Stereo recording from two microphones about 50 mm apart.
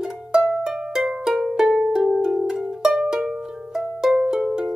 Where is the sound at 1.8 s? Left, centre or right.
Centre.